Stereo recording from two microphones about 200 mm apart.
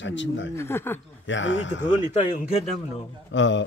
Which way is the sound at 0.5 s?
10° left (ahead or behind).